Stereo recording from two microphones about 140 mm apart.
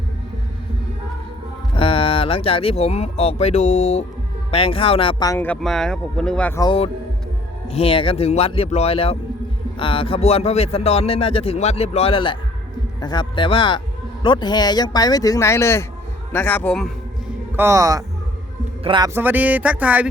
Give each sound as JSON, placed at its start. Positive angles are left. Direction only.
{"t": 1.7, "sound": "speech", "side_deg": 40}
{"t": 5.2, "sound": "speech", "side_deg": 20}
{"t": 5.5, "sound": "speech", "side_deg": 5}
{"t": 7.7, "sound": "a man's voice", "side_deg": 45}
{"t": 17.6, "sound": "speech", "side_deg": -20}
{"t": 18.8, "sound": "a man's voice", "side_deg": -35}
{"t": 19.0, "sound": "speech", "side_deg": -15}